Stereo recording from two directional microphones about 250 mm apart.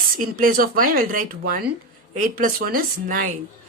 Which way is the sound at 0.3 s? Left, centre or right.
Right.